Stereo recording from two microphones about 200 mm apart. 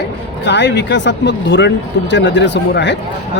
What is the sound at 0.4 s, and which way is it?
Speech, 60° left (ahead or behind).